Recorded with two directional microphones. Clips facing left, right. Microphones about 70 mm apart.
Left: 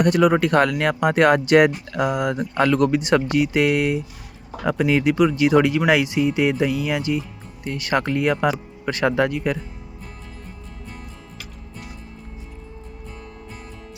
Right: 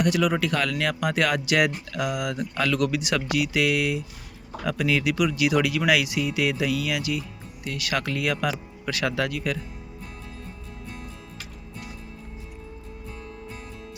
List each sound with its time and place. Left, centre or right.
0.0 s speech: left